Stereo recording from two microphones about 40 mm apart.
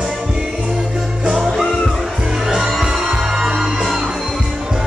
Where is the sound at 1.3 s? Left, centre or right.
Centre.